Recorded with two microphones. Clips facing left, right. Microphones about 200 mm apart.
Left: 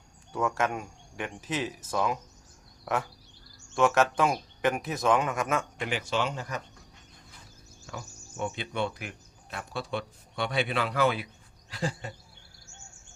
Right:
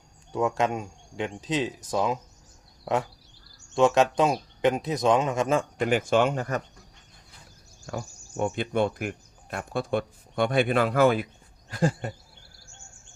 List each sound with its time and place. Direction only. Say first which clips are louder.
0.3 s speech: right 4 dB; 20° right (ahead or behind)
3.8 s speech: right 3 dB; 20° right (ahead or behind)
5.8 s speech: right 8 dB; 50° right (ahead or behind)
7.9 s speech: right 7 dB; 50° right (ahead or behind)